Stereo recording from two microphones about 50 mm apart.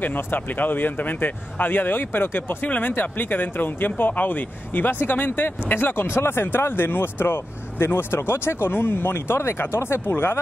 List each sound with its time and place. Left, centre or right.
0.0 s speech: left